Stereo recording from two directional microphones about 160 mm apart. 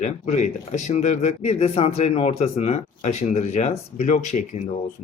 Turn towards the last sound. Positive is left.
turn(degrees=45)  # may be behind; listen again after turning